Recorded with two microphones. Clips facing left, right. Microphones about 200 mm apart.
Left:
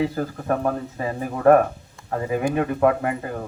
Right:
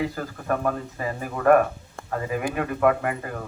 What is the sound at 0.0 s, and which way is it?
Speech, 30° left (ahead or behind).